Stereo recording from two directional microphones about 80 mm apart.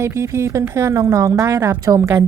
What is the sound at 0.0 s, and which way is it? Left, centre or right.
Speech, right.